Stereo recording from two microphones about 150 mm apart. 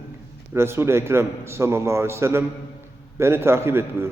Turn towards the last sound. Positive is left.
turn(degrees=-15)  # may be behind; listen again after turning